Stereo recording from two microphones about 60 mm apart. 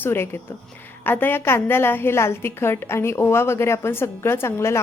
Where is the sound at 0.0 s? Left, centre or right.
Left.